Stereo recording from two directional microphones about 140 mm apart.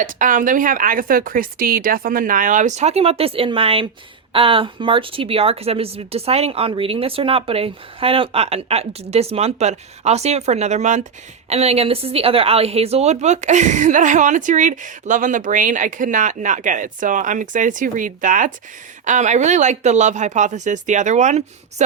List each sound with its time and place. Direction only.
0.0 s a woman's voice: 70° right (ahead or behind)
19.0 s a woman's voice: 60° right (ahead or behind)